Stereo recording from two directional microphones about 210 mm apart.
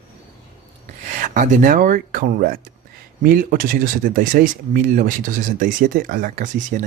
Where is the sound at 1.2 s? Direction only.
40° right (ahead or behind).